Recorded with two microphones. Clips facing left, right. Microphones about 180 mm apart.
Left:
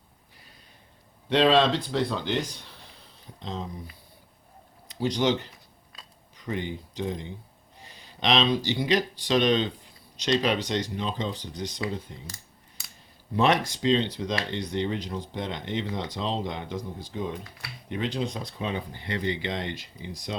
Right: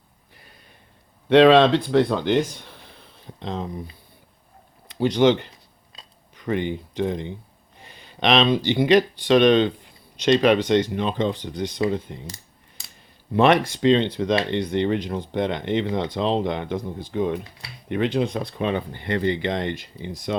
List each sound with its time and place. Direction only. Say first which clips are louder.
1.3 s speech: right 7 dB; 60° right (ahead or behind)
4.9 s speech: right 7 dB; 60° right (ahead or behind)
13.3 s speech: right 6 dB; 60° right (ahead or behind)